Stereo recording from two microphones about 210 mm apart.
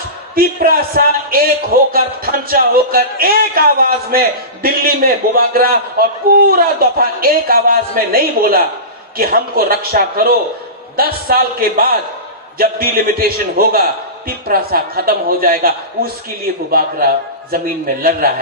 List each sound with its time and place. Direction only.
0.4 s a man's voice: 45° right (ahead or behind)